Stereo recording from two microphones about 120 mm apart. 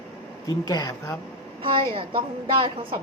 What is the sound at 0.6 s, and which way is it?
Speech, 35° left (ahead or behind).